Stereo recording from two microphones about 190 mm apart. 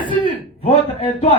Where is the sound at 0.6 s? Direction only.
30° left (ahead or behind).